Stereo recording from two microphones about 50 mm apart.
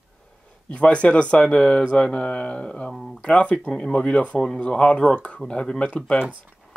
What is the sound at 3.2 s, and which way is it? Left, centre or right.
Speech, left.